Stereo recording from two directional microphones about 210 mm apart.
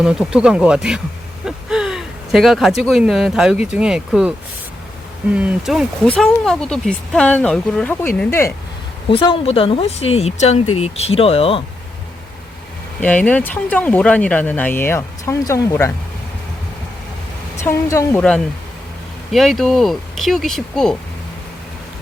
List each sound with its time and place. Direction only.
0.0 s speech: 5° right (ahead or behind); by 8.5 s 10° left (ahead or behind)
9.0 s speech: 25° left (ahead or behind)
13.0 s speech: 5° left (ahead or behind)
17.6 s speech: 15° left (ahead or behind)